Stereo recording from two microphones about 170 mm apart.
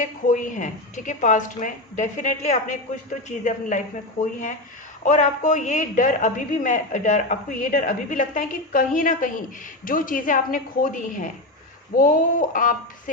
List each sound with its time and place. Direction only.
0.0 s a man's voice: 50° left (ahead or behind)
5.0 s a man's voice: 50° left (ahead or behind)